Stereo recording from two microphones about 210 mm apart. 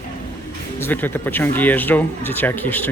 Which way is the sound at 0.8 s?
10° left (ahead or behind).